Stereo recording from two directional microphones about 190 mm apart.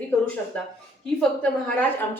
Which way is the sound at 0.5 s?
5° left (ahead or behind).